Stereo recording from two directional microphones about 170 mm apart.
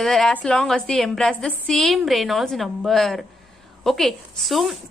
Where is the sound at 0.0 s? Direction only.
Centre (ahead or behind).